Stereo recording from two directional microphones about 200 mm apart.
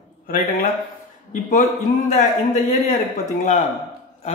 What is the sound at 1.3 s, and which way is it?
Speech, 35° left (ahead or behind).